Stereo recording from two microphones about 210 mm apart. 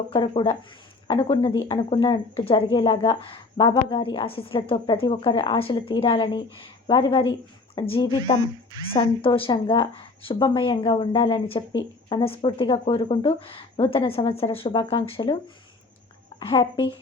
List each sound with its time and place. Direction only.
0.1 s speech: 25° left (ahead or behind)
16.4 s speech: 25° left (ahead or behind)